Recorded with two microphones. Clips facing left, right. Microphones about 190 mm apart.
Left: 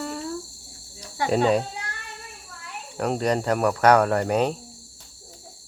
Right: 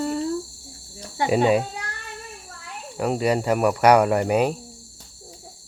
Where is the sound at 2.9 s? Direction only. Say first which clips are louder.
Right 2 dB; 5° right (ahead or behind).